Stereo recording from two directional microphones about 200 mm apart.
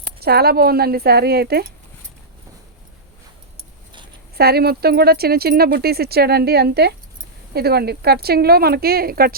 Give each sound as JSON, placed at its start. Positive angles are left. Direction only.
{"t": 0.2, "sound": "speech", "side_deg": -50}
{"t": 4.4, "sound": "speech", "side_deg": -50}